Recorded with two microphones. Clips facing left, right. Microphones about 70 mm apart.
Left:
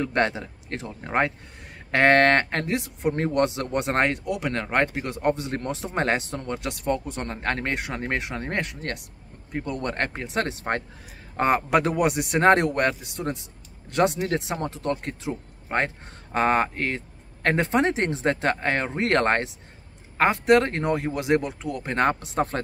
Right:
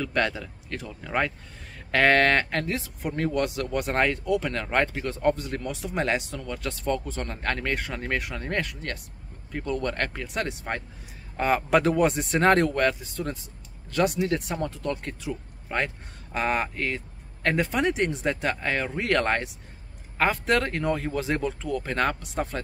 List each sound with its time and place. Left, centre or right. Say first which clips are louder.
0.0 s speech: left 3 dB; left
2.6 s speech: left 5 dB; left
4.3 s speech: right 2 dB; centre
4.7 s speech: even; left
8.8 s speech: left 2 dB; left
9.5 s speech: even; centre
9.8 s speech: left 1 dB; left
11.7 s speech: even; centre; by 18.9 s left
18.9 s speech: left 3 dB; left
20.2 s speech: left 5 dB; left
21.9 s speech: left 6 dB; left